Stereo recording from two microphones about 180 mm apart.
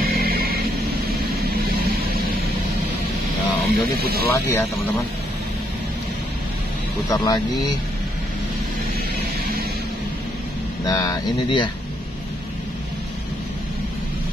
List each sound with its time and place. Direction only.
0.0 s music: 55° right (ahead or behind)
3.6 s music: 60° right (ahead or behind)
4.3 s speech: 15° left (ahead or behind)
7.1 s speech: 20° left (ahead or behind)
10.9 s speech: 20° left (ahead or behind)